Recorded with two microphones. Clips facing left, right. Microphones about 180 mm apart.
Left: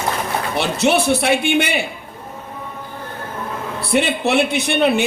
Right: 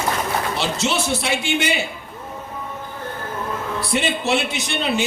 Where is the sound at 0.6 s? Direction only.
60° left (ahead or behind).